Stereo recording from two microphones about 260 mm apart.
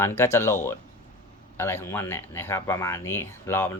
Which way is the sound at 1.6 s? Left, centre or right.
Centre.